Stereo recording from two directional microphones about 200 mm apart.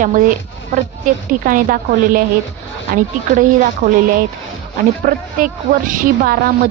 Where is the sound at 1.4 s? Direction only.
45° right (ahead or behind).